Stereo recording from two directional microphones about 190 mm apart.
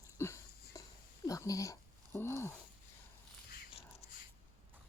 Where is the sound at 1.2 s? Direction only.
15° left (ahead or behind).